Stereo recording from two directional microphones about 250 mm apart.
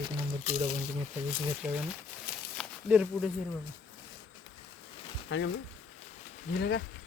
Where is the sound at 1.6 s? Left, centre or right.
Centre.